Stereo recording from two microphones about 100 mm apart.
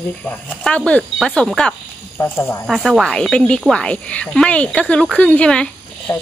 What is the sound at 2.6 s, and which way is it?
Speech, centre (ahead or behind).